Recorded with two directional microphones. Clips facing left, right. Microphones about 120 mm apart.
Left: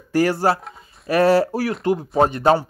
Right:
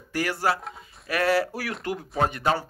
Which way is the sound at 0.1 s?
35° left (ahead or behind).